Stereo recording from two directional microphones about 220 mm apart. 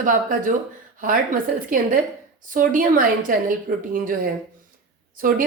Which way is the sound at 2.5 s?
40° right (ahead or behind).